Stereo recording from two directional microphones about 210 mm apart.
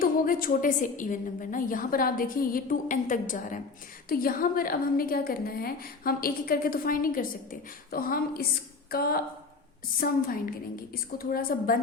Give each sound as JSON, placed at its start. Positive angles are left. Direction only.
{"t": 0.0, "sound": "a woman's voice", "side_deg": 45}